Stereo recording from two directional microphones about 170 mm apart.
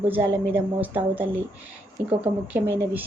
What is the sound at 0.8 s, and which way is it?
Speech, 10° right (ahead or behind).